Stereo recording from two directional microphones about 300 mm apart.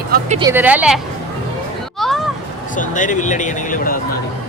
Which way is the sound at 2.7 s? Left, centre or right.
Left.